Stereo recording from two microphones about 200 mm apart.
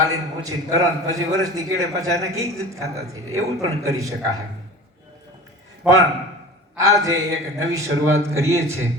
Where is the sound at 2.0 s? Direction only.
15° right (ahead or behind).